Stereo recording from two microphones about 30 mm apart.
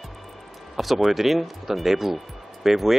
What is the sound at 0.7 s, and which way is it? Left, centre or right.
Speech, centre.